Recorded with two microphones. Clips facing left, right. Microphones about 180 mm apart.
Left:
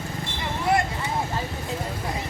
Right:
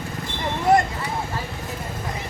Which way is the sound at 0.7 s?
45° right (ahead or behind).